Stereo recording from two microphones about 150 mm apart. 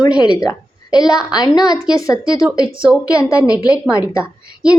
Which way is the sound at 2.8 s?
5° right (ahead or behind).